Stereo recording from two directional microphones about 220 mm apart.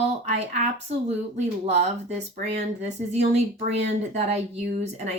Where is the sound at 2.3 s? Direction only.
30° right (ahead or behind).